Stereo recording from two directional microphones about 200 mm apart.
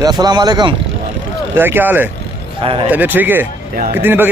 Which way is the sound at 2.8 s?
10° right (ahead or behind).